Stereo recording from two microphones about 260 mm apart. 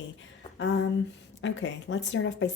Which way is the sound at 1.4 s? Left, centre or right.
Left.